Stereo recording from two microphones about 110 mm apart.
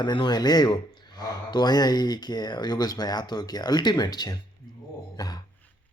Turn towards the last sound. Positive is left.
turn(degrees=35)  # may be behind; listen again after turning